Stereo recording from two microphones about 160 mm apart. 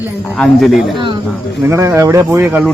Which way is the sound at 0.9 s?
30° right (ahead or behind).